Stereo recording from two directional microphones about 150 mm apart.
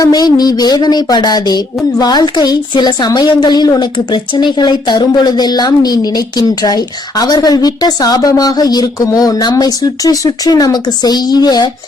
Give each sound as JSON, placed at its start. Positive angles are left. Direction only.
{"t": 0.0, "sound": "speech", "side_deg": 25}